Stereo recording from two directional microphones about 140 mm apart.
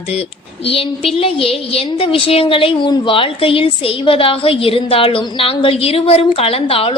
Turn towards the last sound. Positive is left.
turn(degrees=40)  # may be behind; listen again after turning